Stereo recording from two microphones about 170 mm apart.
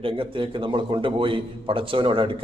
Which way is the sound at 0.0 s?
30° right (ahead or behind).